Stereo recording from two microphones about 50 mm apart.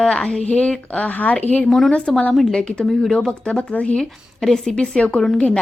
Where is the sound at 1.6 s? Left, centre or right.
Centre.